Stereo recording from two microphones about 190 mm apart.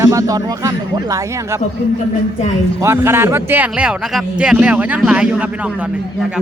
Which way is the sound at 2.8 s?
15° right (ahead or behind).